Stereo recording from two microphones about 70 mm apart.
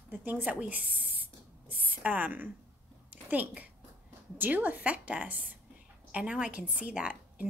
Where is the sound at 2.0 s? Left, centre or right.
Right.